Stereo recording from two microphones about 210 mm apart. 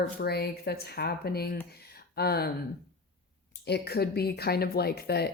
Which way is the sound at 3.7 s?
50° left (ahead or behind).